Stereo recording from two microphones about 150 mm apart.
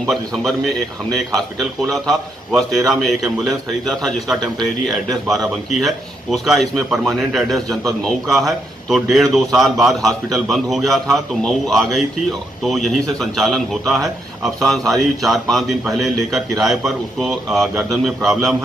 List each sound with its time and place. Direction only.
0.0 s speech: centre (ahead or behind)